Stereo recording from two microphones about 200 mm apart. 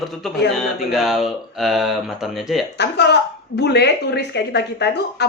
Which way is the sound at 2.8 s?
60° left (ahead or behind).